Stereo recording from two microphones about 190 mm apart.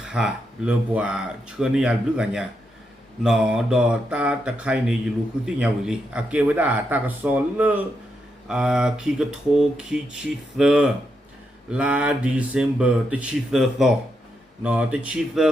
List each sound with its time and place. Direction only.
0.0 s speech: 5° right (ahead or behind)